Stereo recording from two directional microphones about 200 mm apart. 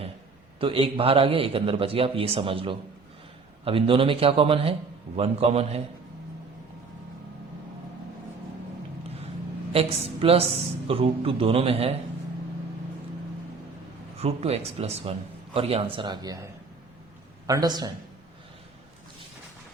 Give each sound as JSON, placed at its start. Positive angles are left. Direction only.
{"t": 0.6, "sound": "a man's voice", "side_deg": -25}
{"t": 9.7, "sound": "a man's voice", "side_deg": -30}
{"t": 14.2, "sound": "a man's voice", "side_deg": -30}